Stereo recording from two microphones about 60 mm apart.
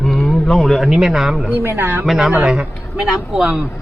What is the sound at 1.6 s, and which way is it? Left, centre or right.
Speech, right.